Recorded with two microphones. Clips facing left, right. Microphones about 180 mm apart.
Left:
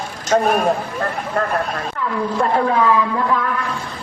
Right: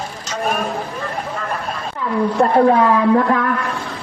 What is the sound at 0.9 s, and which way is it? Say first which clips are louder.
Speech: left 4 dB; 60° left (ahead or behind).